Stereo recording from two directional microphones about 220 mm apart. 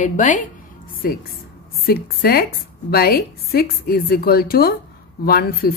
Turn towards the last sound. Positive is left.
turn(degrees=45)  # may be behind; listen again after turning